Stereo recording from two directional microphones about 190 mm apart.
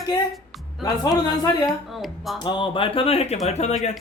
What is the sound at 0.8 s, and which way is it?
Speech, 20° left (ahead or behind).